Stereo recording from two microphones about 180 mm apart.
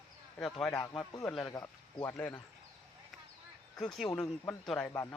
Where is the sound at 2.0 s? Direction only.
10° left (ahead or behind).